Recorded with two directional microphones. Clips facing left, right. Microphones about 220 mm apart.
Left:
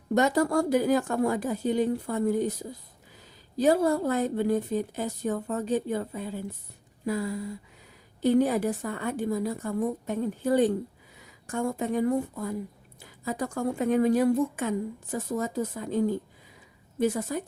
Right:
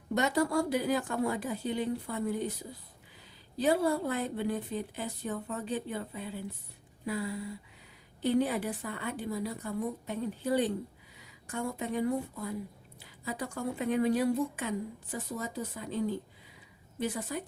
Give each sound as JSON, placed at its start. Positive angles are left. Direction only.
{"t": 0.1, "sound": "speech", "side_deg": 45}
{"t": 3.6, "sound": "speech", "side_deg": 45}